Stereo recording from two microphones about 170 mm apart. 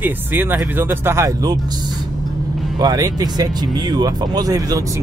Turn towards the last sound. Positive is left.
turn(degrees=-20)  # may be behind; listen again after turning